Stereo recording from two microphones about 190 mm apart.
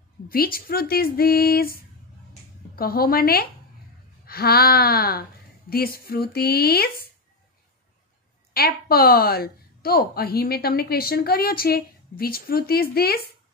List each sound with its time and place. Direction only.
0.3 s a woman's voice: 50° left (ahead or behind)
8.5 s a woman's voice: 55° left (ahead or behind)